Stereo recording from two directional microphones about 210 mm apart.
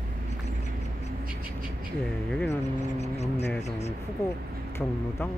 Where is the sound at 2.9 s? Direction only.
30° left (ahead or behind).